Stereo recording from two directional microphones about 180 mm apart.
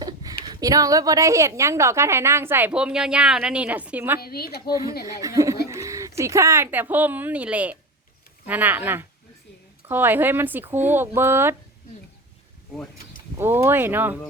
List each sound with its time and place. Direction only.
0.4 s a woman's voice: 20° right (ahead or behind)
4.2 s a woman's voice: 60° left (ahead or behind)
4.7 s a woman's voice: 20° right (ahead or behind)
13.4 s a woman's voice: 10° right (ahead or behind)